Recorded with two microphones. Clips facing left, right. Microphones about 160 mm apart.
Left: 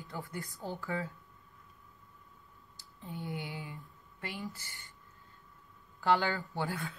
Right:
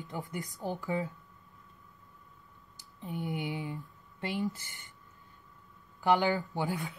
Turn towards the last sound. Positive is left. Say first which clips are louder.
# right 3 dB
turn(degrees=-15)  # may be behind; listen again after turning